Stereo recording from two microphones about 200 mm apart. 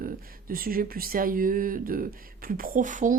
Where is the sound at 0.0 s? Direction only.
45° right (ahead or behind).